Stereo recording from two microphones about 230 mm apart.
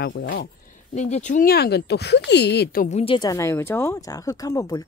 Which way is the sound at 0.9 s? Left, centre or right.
Left.